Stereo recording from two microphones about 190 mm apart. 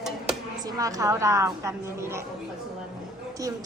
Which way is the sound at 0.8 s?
20° right (ahead or behind).